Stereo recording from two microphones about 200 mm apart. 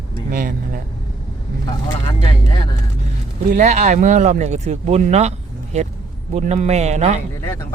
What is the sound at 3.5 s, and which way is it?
Speech, 35° right (ahead or behind).